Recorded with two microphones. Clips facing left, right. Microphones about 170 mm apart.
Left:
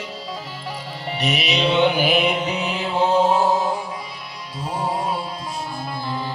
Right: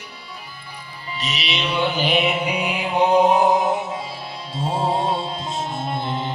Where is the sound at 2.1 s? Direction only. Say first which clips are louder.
Even; 5° right (ahead or behind).